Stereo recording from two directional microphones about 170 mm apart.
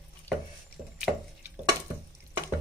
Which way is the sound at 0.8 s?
15° right (ahead or behind).